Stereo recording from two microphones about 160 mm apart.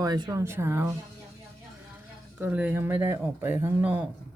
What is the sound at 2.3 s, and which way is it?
Speech, 10° right (ahead or behind).